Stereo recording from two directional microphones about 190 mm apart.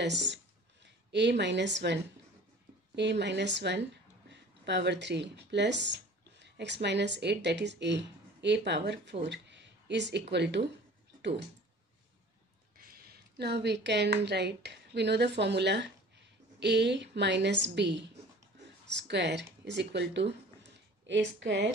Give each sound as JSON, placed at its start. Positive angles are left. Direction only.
{"t": 0.0, "sound": "a woman's voice", "side_deg": -65}
{"t": 3.0, "sound": "a woman's voice", "side_deg": -65}
{"t": 12.7, "sound": "a woman's voice", "side_deg": -50}